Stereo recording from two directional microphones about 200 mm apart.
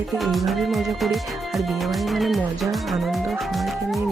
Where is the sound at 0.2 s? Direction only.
Centre (ahead or behind).